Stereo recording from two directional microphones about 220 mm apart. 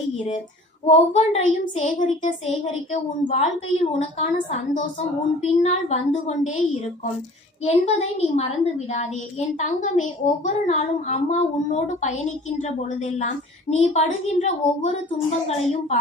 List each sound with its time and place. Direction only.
0.9 s a woman's voice: 30° left (ahead or behind)
7.6 s a woman's voice: 30° left (ahead or behind)